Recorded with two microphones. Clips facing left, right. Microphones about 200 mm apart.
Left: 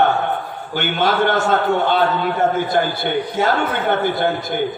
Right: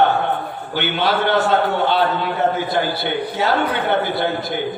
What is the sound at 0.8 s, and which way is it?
A man's voice, 50° left (ahead or behind).